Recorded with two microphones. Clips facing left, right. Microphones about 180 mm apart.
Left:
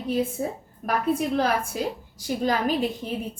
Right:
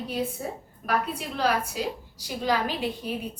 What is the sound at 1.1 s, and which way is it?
A woman's voice, 50° left (ahead or behind).